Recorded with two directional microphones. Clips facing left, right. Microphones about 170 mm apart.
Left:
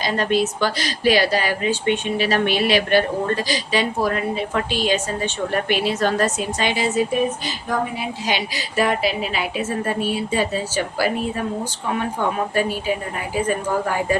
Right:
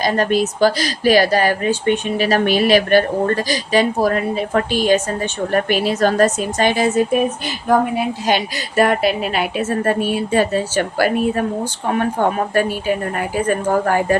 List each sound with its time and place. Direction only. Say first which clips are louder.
0.0 s a woman's voice: right 3 dB; 45° right (ahead or behind)